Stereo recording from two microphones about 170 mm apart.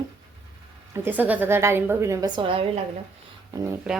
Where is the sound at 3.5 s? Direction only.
20° right (ahead or behind).